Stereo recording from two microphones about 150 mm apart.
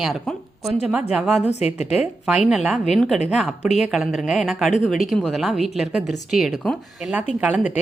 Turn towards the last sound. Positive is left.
turn(degrees=-10)  # may be behind; listen again after turning